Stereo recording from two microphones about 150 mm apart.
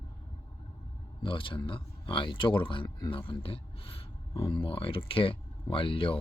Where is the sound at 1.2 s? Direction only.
35° left (ahead or behind).